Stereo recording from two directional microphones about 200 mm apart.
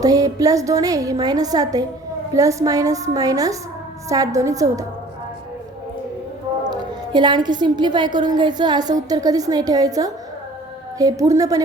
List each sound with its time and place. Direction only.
0.0 s a woman's voice: 15° right (ahead or behind)
6.7 s a woman's voice: 20° right (ahead or behind)